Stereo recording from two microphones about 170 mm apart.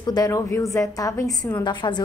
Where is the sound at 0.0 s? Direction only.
25° left (ahead or behind).